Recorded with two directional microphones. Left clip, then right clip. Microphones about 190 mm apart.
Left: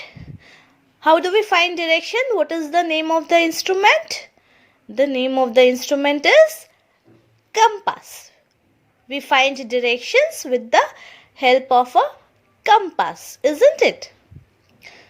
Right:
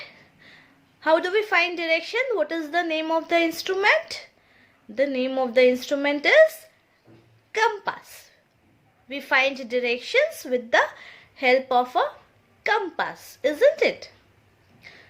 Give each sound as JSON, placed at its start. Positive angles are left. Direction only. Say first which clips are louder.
{"t": 0.0, "sound": "a woman's voice", "louder": "left 4 dB", "side_deg": 30}
{"t": 7.5, "sound": "a woman's voice", "louder": "left 7 dB", "side_deg": 30}
{"t": 14.8, "sound": "a sound", "louder": "left 4 dB", "side_deg": 30}